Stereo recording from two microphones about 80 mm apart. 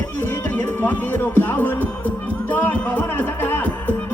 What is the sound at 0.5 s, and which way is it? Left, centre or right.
Music, left.